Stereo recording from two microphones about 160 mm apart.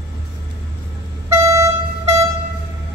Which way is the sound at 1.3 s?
20° right (ahead or behind).